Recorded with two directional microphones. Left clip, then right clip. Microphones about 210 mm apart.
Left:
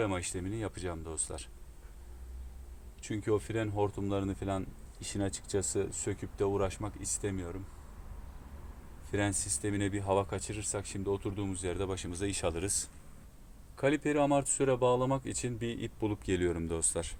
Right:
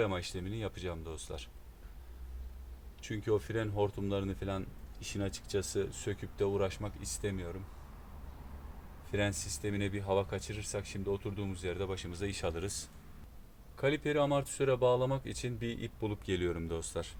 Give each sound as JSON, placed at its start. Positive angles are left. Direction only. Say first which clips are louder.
{"t": 0.0, "sound": "speech", "louder": "even", "side_deg": 35}
{"t": 3.0, "sound": "speech", "louder": "left 1 dB", "side_deg": 25}
{"t": 9.1, "sound": "speech", "louder": "left 1 dB", "side_deg": 35}